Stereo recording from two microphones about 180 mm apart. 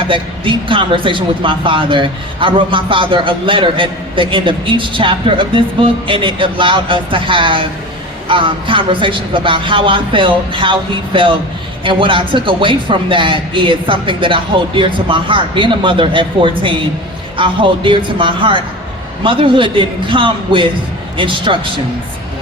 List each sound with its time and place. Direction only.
0.1 s speech: 30° right (ahead or behind)